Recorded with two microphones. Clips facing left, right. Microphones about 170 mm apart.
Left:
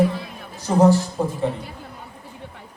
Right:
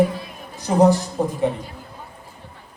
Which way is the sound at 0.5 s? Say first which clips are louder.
Even; 15° right (ahead or behind).